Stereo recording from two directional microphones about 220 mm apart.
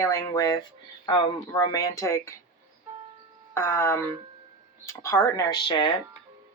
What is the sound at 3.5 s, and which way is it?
Speech, 10° left (ahead or behind).